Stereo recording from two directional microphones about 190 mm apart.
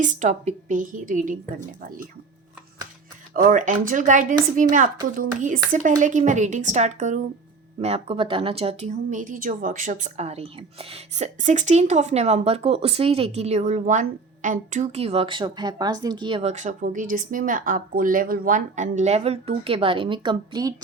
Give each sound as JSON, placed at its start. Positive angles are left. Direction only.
{"t": 0.0, "sound": "a woman's voice", "side_deg": -40}
{"t": 3.3, "sound": "a woman's voice", "side_deg": -45}